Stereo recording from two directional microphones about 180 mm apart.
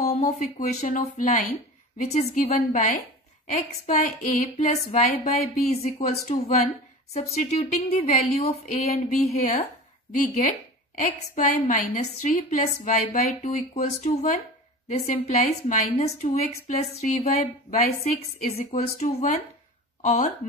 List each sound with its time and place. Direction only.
0.0 s a woman's voice: 40° left (ahead or behind)